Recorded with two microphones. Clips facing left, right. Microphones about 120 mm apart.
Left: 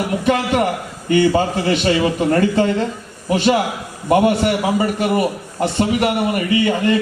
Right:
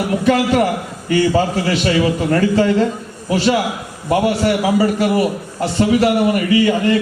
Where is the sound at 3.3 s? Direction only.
25° left (ahead or behind).